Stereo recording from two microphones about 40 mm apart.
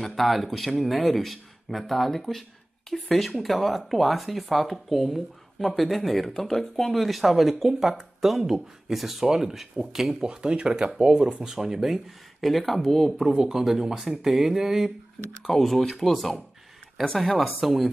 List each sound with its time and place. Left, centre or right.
0.0 s speech: centre
10.2 s speech: right
11.5 s speech: centre
13.3 s speech: centre
15.4 s speech: centre